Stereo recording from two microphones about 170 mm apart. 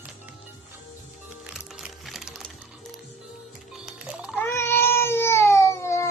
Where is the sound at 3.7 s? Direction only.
5° right (ahead or behind).